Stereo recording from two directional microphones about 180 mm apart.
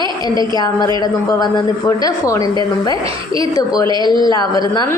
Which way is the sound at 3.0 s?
30° right (ahead or behind).